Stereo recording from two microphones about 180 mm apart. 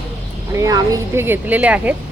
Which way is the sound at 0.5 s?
20° right (ahead or behind).